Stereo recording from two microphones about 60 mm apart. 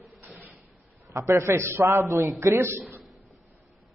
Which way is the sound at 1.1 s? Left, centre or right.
Right.